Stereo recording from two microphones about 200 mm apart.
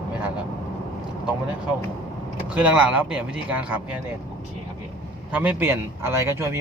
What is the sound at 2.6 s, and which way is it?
A man's voice, 5° right (ahead or behind).